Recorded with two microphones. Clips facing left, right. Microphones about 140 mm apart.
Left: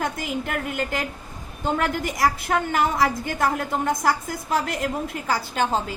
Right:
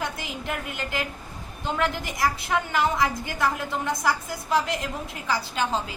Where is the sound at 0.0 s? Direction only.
50° left (ahead or behind).